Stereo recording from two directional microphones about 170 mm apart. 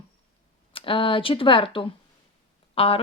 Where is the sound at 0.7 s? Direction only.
30° left (ahead or behind).